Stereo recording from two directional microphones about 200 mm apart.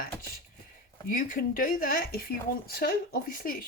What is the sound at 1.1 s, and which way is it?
Speech, 45° left (ahead or behind).